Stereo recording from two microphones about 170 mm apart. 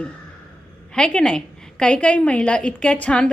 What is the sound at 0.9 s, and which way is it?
A woman's voice, 5° left (ahead or behind).